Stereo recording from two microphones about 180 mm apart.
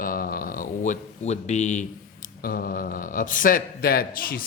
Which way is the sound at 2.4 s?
55° left (ahead or behind).